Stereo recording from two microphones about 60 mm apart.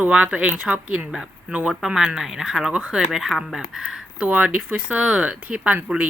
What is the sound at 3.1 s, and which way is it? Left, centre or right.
Speech, centre.